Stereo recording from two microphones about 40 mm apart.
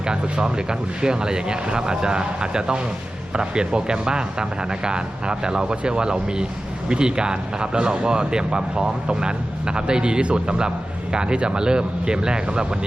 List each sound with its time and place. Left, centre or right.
0.1 s speech: right